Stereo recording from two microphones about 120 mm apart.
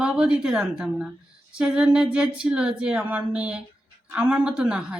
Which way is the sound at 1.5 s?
5° right (ahead or behind).